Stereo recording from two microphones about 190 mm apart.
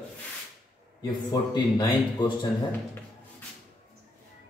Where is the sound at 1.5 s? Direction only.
25° left (ahead or behind).